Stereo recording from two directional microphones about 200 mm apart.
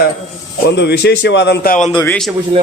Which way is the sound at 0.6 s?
60° left (ahead or behind).